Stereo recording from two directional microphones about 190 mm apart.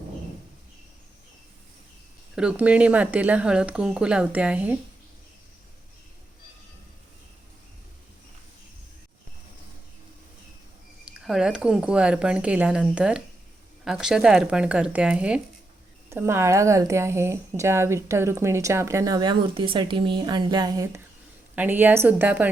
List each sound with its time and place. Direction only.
2.3 s a woman's voice: 5° right (ahead or behind)
11.3 s a woman's voice: 5° right (ahead or behind)